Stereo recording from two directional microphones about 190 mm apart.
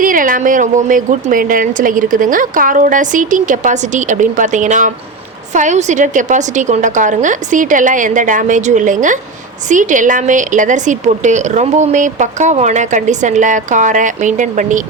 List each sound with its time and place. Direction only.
0.0 s a woman's voice: 45° right (ahead or behind)